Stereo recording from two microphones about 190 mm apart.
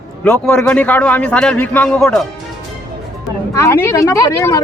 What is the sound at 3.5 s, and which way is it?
Speech, 15° left (ahead or behind).